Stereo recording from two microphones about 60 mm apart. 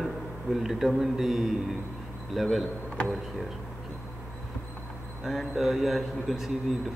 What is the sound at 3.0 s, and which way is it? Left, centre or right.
Speech, centre.